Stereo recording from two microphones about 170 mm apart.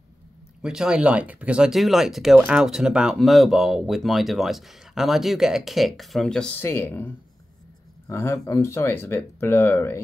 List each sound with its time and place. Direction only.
0.6 s speech: 5° right (ahead or behind); by 9.9 s 15° left (ahead or behind)